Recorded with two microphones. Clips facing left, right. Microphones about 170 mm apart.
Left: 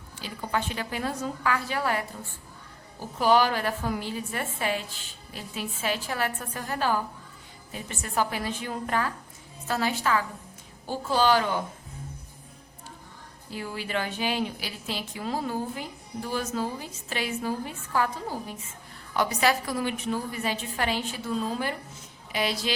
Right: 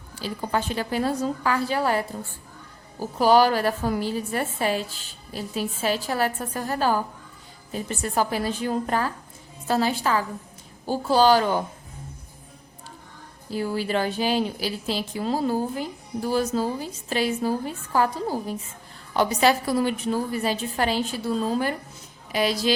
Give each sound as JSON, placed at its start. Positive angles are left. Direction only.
{"t": 0.2, "sound": "a woman's voice", "side_deg": -35}
{"t": 3.2, "sound": "a woman's voice", "side_deg": -35}
{"t": 13.5, "sound": "a woman's voice", "side_deg": -35}